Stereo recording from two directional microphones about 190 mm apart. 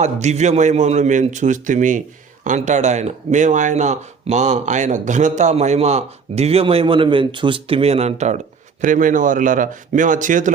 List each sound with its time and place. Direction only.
0.0 s speech: 35° right (ahead or behind)